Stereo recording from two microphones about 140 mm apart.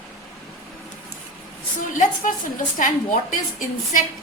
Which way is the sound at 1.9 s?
70° left (ahead or behind).